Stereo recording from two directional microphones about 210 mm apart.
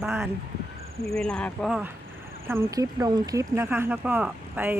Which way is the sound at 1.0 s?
Centre (ahead or behind).